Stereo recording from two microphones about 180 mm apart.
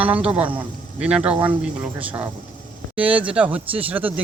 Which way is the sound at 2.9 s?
10° right (ahead or behind).